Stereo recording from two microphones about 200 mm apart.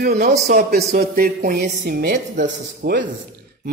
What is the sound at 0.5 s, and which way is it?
A woman's voice, 40° right (ahead or behind).